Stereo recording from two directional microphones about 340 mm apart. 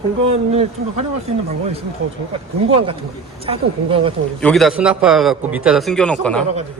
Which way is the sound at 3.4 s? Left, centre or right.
Centre.